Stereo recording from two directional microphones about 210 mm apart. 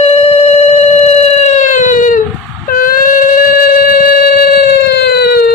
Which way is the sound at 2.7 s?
40° left (ahead or behind).